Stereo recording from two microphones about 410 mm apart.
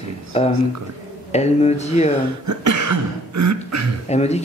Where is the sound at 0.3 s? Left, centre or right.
Centre.